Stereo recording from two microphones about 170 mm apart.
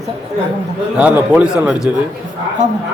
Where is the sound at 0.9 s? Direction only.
10° right (ahead or behind).